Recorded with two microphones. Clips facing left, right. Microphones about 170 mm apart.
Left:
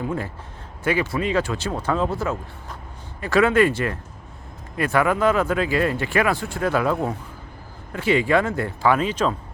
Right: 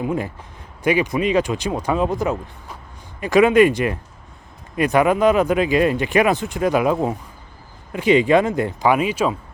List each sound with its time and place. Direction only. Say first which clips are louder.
0.0 s a man's voice: right 4 dB; 15° right (ahead or behind)